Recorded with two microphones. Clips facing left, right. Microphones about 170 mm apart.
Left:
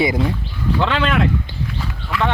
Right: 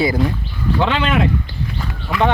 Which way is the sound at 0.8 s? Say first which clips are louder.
Right 1 dB; 5° right (ahead or behind).